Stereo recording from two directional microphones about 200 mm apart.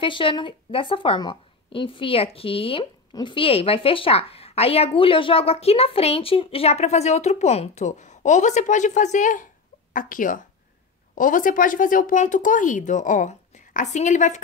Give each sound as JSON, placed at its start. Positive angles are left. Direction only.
{"t": 0.0, "sound": "a woman's voice", "side_deg": 25}